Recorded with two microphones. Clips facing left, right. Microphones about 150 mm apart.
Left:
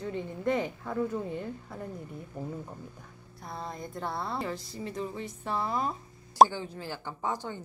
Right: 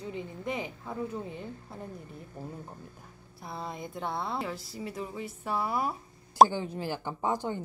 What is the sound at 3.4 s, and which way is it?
Speech, 5° right (ahead or behind).